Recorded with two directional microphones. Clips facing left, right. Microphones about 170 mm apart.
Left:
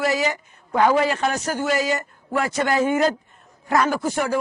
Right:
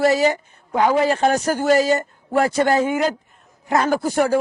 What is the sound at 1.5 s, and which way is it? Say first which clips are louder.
Speech: right 5 dB; 45° right (ahead or behind).